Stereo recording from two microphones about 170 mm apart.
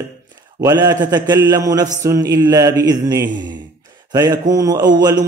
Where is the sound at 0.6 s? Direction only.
20° right (ahead or behind).